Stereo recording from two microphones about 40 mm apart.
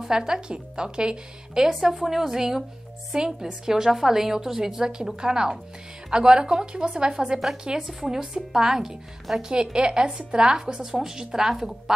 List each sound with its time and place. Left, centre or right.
0.0 s a woman's voice: centre
1.7 s a woman's voice: centre